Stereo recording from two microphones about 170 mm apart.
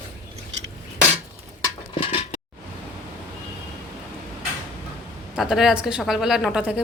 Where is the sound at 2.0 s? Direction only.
35° left (ahead or behind).